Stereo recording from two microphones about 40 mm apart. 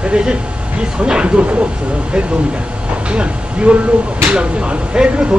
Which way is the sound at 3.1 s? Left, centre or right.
Right.